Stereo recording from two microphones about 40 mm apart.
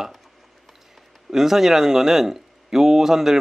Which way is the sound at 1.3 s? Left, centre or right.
Centre.